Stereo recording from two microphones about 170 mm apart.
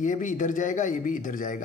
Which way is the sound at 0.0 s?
50° left (ahead or behind).